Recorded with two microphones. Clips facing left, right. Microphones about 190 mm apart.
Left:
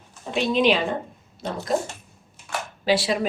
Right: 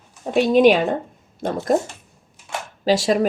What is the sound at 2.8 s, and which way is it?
Speech, 45° right (ahead or behind).